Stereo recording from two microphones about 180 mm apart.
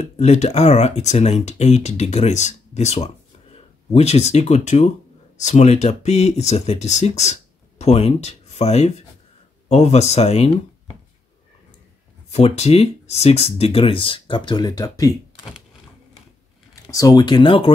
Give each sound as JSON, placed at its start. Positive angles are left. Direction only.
{"t": 0.0, "sound": "speech", "side_deg": 35}
{"t": 12.3, "sound": "speech", "side_deg": 35}
{"t": 16.8, "sound": "speech", "side_deg": 20}